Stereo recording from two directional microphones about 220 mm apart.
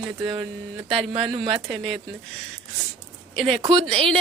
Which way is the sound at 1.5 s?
Centre (ahead or behind).